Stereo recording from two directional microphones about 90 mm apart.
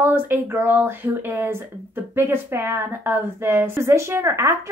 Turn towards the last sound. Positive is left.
turn(degrees=-35)  # may be behind; listen again after turning